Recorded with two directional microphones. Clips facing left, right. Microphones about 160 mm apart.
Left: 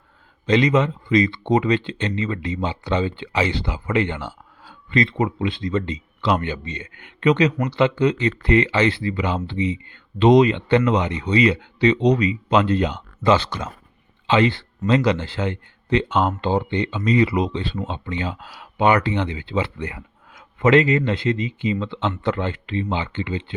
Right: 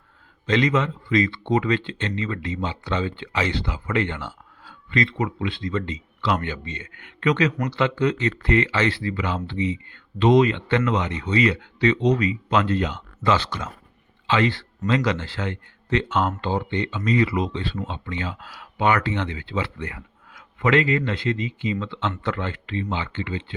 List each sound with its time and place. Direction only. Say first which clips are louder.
0.4 s speech: left 3 dB; 15° left (ahead or behind)
4.9 s speech: left 3 dB; 25° left (ahead or behind)